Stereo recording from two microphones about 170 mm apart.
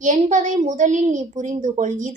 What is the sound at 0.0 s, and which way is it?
A woman's voice, 45° right (ahead or behind).